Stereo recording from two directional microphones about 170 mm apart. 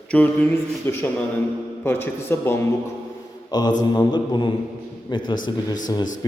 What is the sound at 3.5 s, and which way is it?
A man's voice, 25° left (ahead or behind).